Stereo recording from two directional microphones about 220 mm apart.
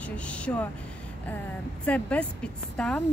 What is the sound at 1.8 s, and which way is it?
Speech, 5° left (ahead or behind).